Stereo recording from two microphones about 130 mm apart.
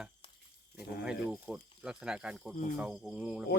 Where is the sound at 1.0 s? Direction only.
5° right (ahead or behind).